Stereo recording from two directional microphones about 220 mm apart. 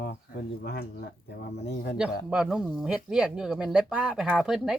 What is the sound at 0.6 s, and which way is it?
Speech, 45° left (ahead or behind).